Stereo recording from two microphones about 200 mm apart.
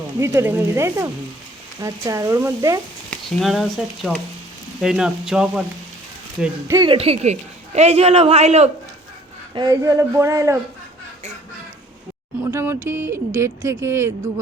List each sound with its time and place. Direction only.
0.2 s speech: 10° right (ahead or behind)
3.2 s speech: centre (ahead or behind)
6.7 s a man's voice: 20° right (ahead or behind)
9.6 s speech: 20° right (ahead or behind)
12.5 s speech: 10° right (ahead or behind)